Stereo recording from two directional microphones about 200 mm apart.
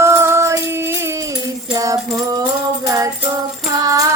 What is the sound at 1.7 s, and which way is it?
Music, 15° right (ahead or behind).